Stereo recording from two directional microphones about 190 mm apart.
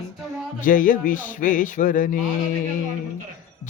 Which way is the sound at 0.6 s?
45° left (ahead or behind).